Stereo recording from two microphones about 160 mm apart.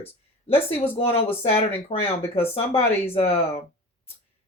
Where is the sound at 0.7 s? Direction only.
15° left (ahead or behind).